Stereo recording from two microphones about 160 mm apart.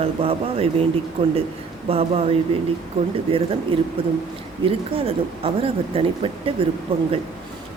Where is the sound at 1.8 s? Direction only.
35° right (ahead or behind).